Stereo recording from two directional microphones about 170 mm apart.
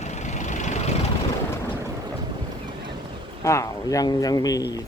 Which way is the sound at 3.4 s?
20° left (ahead or behind).